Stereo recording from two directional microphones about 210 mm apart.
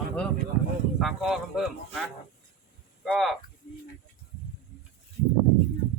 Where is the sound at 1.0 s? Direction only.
Centre (ahead or behind).